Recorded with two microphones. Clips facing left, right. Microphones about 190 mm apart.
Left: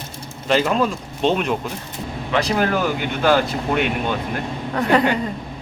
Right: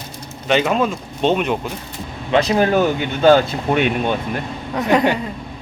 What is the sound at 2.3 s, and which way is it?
Speech, 20° right (ahead or behind).